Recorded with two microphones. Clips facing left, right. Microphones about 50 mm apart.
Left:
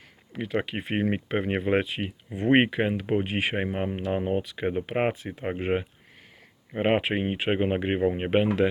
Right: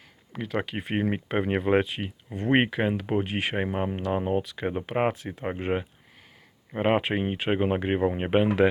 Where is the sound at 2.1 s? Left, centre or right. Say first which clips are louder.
Left 2 dB; centre.